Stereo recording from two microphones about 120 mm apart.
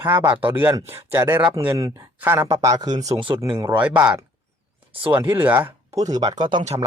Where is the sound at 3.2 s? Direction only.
45° right (ahead or behind).